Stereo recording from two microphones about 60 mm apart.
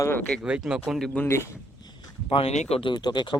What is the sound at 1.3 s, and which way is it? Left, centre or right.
Speech, left.